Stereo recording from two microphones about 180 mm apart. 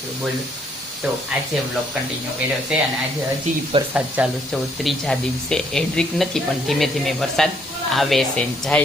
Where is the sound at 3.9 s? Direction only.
5° right (ahead or behind).